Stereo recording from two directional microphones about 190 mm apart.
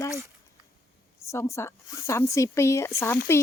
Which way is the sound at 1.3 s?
15° left (ahead or behind).